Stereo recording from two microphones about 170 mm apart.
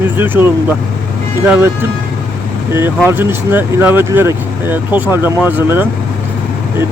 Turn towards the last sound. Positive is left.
turn(degrees=-10)  # may be behind; listen again after turning